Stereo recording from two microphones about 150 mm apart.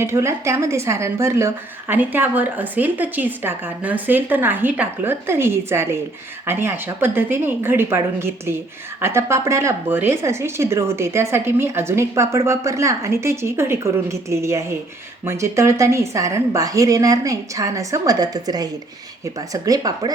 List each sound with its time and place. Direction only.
0.0 s a woman's voice: 20° right (ahead or behind)